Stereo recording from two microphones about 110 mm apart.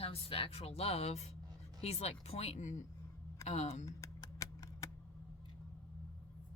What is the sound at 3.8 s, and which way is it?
Typing, 30° left (ahead or behind).